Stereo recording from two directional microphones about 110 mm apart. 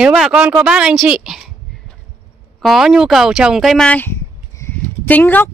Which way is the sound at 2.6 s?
Centre (ahead or behind).